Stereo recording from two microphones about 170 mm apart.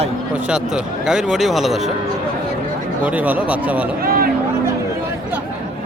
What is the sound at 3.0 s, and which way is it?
Speech, 10° right (ahead or behind).